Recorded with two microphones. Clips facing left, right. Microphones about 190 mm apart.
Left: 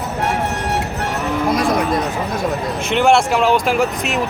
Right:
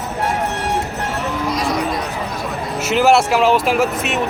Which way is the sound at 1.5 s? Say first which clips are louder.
Left 4 dB; 55° left (ahead or behind).